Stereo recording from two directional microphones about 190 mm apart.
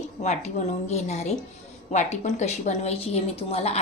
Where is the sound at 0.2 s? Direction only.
35° left (ahead or behind).